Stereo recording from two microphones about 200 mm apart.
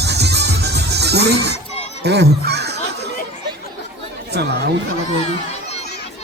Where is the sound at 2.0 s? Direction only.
55° right (ahead or behind).